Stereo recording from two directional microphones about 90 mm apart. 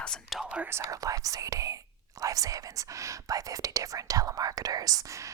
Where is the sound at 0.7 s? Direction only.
35° right (ahead or behind).